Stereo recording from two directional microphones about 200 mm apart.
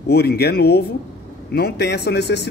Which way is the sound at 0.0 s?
55° left (ahead or behind).